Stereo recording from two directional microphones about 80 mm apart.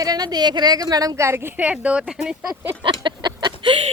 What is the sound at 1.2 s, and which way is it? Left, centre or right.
Speech, right.